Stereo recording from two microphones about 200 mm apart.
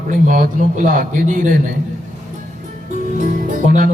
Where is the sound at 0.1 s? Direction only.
45° right (ahead or behind).